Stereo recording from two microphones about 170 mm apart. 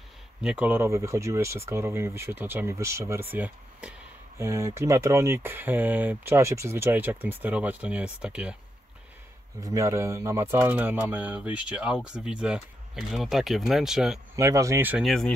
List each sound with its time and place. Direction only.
0.4 s speech: 5° right (ahead or behind)
9.6 s speech: 20° right (ahead or behind); by 14.2 s 5° right (ahead or behind)
14.3 s speech: 20° right (ahead or behind)
15.0 s speech: 5° left (ahead or behind)